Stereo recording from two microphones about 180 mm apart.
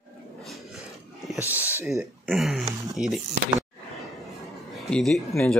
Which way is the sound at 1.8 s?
Centre (ahead or behind).